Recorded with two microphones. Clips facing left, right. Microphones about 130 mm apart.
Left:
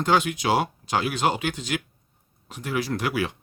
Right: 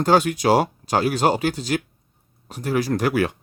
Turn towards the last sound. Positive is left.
turn(degrees=-45)  # may be behind; listen again after turning